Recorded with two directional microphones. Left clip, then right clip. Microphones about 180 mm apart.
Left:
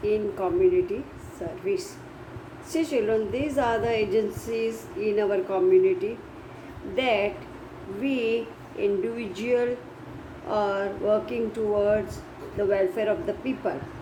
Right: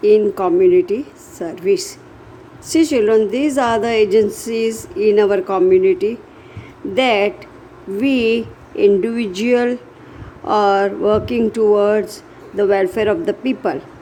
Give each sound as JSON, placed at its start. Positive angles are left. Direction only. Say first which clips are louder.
{"t": 0.0, "sound": "a woman's voice", "louder": "right 13 dB", "side_deg": -60}